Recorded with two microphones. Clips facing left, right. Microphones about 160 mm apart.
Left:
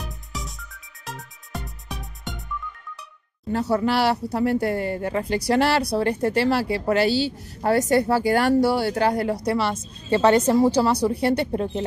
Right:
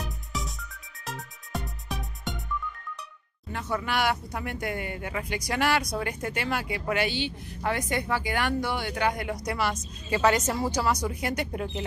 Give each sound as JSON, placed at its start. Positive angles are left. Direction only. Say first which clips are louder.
{"t": 0.0, "sound": "music", "louder": "even", "side_deg": 0}
{"t": 3.5, "sound": "speech", "louder": "left 8 dB", "side_deg": 35}